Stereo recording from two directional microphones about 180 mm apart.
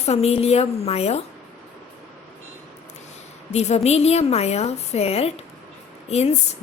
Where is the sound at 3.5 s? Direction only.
35° left (ahead or behind).